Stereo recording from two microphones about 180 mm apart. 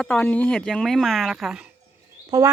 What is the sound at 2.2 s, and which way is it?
Speech, 20° right (ahead or behind).